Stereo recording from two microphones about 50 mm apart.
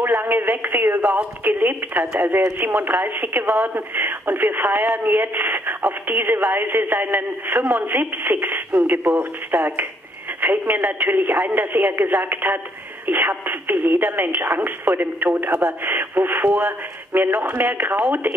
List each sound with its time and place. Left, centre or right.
0.0 s a woman's voice: right